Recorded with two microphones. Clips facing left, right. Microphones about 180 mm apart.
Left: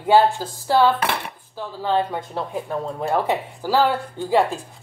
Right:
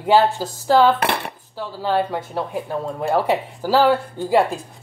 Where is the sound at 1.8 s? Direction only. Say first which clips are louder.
Right 1 dB; 5° right (ahead or behind).